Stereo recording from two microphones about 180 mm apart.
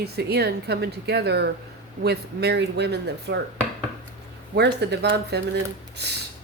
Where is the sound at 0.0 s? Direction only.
65° right (ahead or behind).